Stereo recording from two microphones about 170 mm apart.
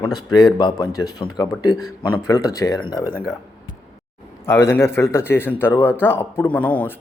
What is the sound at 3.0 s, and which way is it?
Speech, 5° right (ahead or behind).